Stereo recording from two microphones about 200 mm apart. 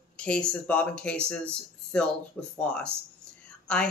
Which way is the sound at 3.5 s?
5° left (ahead or behind).